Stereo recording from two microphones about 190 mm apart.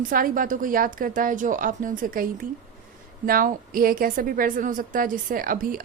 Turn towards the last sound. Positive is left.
turn(degrees=-45)  # may be behind; listen again after turning